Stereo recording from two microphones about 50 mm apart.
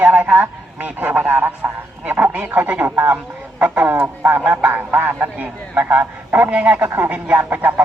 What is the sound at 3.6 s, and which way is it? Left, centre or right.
Speech, right.